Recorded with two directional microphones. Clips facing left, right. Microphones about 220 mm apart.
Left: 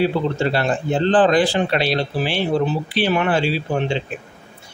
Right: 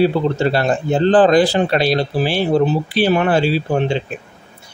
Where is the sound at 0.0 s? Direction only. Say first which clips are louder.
Right 4 dB; 40° right (ahead or behind).